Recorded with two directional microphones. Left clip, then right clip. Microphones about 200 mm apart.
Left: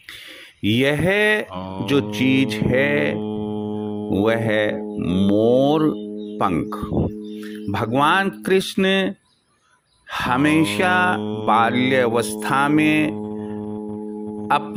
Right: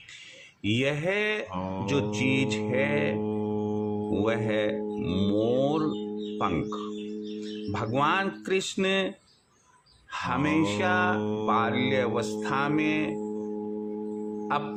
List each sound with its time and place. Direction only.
0.6 s mantra: 40° left (ahead or behind)
5.3 s music: 45° left (ahead or behind)
6.4 s speech: 35° left (ahead or behind)
10.1 s music: 45° left (ahead or behind)
11.2 s speech: 35° left (ahead or behind)
11.4 s music: 50° left (ahead or behind)
14.5 s speech: 50° left (ahead or behind)